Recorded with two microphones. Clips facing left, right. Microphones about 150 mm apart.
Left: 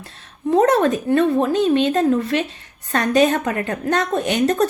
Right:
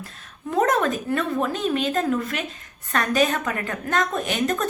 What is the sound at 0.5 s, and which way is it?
A woman's voice, 35° left (ahead or behind).